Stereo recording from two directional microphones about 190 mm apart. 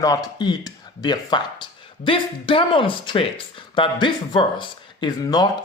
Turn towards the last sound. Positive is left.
turn(degrees=20)  # may be behind; listen again after turning